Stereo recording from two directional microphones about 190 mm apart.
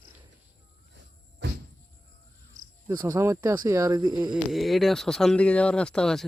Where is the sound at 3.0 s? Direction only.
15° right (ahead or behind).